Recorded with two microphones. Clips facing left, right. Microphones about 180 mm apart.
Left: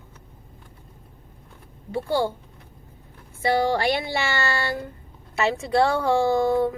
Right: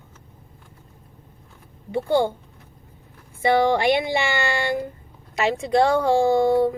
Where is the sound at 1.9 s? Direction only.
20° right (ahead or behind).